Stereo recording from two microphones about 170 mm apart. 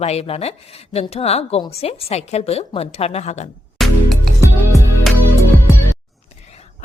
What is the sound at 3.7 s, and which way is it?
Music, centre (ahead or behind).